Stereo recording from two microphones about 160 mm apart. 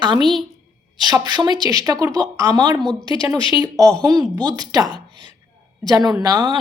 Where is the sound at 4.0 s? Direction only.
25° right (ahead or behind).